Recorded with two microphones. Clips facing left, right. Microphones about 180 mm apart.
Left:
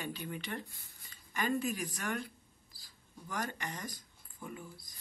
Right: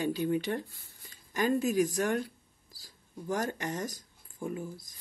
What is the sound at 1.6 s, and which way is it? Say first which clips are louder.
Speech: right 10 dB; 40° right (ahead or behind).